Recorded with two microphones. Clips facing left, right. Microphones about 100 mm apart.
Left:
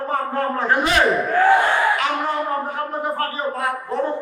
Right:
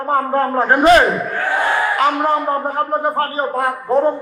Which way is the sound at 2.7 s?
40° right (ahead or behind).